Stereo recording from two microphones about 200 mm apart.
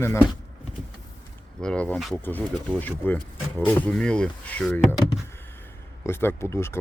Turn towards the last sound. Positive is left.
turn(degrees=10)  # may be behind; listen again after turning